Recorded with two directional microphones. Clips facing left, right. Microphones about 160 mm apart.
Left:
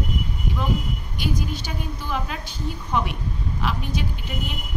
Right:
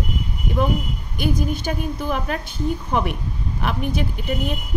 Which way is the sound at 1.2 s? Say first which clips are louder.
Right 6 dB; 50° right (ahead or behind).